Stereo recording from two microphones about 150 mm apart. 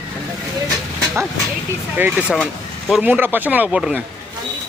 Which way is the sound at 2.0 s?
10° right (ahead or behind).